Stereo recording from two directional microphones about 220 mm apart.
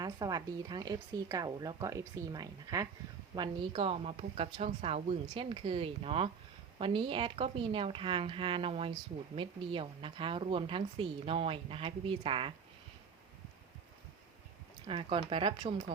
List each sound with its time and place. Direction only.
0.0 s a woman's voice: 15° right (ahead or behind)
14.8 s a woman's voice: 25° right (ahead or behind)